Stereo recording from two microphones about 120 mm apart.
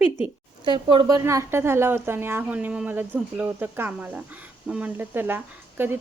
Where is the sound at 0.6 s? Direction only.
40° right (ahead or behind).